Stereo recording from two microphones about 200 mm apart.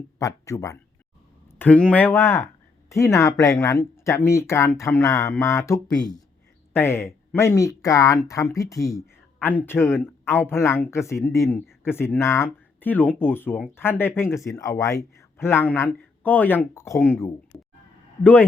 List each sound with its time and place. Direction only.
0.2 s speech: 15° left (ahead or behind)
17.5 s a sound: 25° left (ahead or behind)
18.2 s speech: 10° left (ahead or behind)